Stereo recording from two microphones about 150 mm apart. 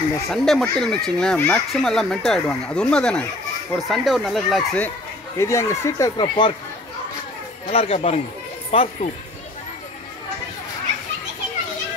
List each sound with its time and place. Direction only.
0.3 s speech: 5° left (ahead or behind)
5.4 s speech: 20° left (ahead or behind)
6.1 s speech: 30° left (ahead or behind)
7.7 s speech: 40° left (ahead or behind)